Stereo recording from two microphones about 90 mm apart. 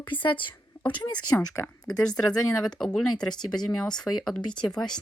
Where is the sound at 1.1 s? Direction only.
55° left (ahead or behind).